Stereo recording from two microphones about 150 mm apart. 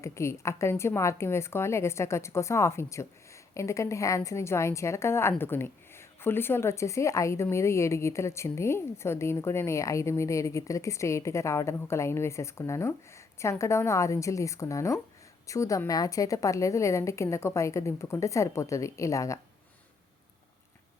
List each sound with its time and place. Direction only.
0.0 s a woman's voice: 20° left (ahead or behind)